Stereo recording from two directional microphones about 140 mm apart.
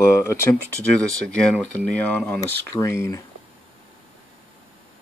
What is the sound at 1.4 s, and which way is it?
Speech, 5° left (ahead or behind).